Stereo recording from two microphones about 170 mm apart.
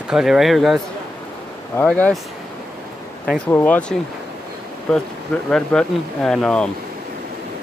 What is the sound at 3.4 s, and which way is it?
Speech, 10° left (ahead or behind).